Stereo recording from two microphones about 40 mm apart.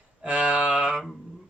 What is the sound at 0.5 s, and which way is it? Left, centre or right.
Mantra, right.